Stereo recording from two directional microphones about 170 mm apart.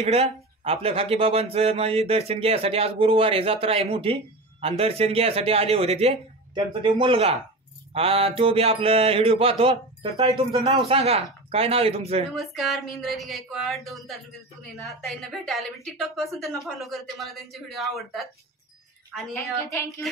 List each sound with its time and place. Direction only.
0.0 s speech: 35° right (ahead or behind)
12.4 s a woman's voice: centre (ahead or behind)